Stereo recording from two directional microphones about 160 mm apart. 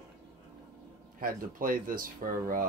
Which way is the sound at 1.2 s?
60° right (ahead or behind).